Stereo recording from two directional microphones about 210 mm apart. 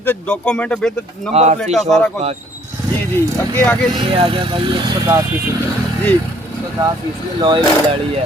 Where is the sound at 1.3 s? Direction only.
30° right (ahead or behind).